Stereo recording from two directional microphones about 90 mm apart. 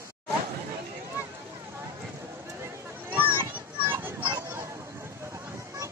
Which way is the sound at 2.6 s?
20° right (ahead or behind).